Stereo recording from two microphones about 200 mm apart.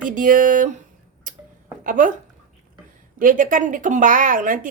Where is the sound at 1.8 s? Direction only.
40° right (ahead or behind).